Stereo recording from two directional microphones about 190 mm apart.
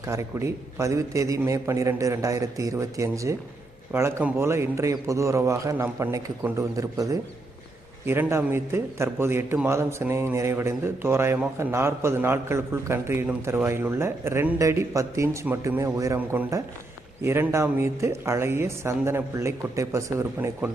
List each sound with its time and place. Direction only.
0.0 s a man's voice: 15° right (ahead or behind)